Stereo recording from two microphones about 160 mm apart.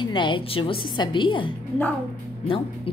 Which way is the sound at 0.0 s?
30° left (ahead or behind).